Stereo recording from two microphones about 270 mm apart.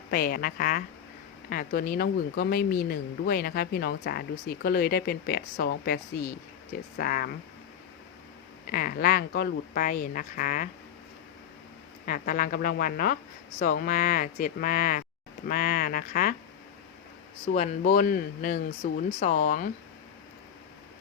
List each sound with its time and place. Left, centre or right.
0.1 s speech: left
8.7 s speech: left
12.0 s speech: left
17.5 s speech: left